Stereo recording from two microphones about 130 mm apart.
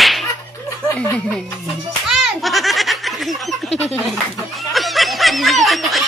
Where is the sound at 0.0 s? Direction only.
Centre (ahead or behind).